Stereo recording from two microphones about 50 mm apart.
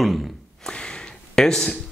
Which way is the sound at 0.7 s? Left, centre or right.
Centre.